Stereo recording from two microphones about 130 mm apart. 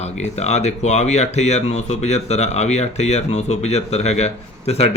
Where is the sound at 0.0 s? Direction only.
60° left (ahead or behind).